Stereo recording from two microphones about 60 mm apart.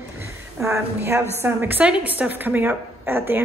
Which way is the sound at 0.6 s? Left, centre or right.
Right.